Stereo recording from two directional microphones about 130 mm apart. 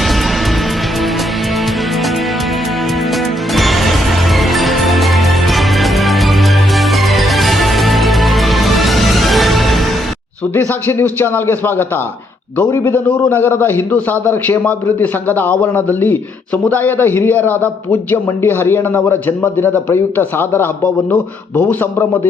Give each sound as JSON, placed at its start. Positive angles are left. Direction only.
{"t": 3.5, "sound": "music", "side_deg": 0}
{"t": 10.5, "sound": "a man's voice", "side_deg": 15}